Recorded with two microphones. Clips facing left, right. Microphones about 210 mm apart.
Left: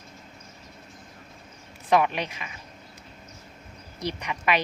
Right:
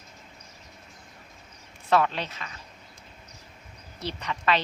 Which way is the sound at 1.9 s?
15° left (ahead or behind).